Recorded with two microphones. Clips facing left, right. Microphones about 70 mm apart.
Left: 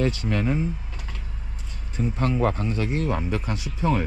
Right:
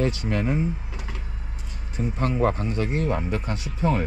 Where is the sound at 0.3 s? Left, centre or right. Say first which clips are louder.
Even; right.